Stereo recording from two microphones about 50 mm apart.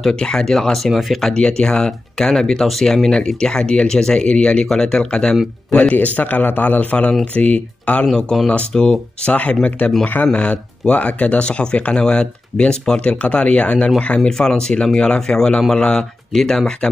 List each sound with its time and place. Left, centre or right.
0.1 s speech: centre
1.3 s speech: centre
5.8 s a man's voice: left
8.1 s speech: centre